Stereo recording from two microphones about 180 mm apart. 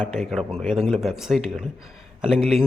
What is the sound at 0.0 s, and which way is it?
Speech, centre (ahead or behind).